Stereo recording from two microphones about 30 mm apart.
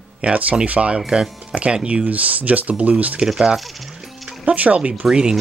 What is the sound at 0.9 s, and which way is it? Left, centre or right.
Speech, right.